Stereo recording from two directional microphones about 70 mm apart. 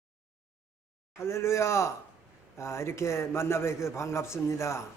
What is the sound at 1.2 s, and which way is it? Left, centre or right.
A man's voice, left.